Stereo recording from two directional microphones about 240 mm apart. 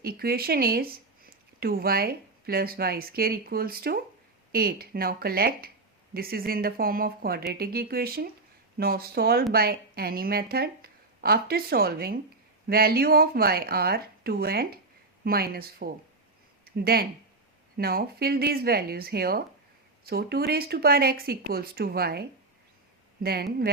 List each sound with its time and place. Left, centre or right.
0.0 s a woman's voice: right